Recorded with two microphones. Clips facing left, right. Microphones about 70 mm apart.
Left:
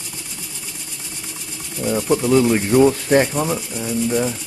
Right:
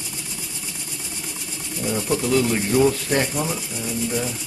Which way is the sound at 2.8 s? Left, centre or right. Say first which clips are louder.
Left 5 dB; left.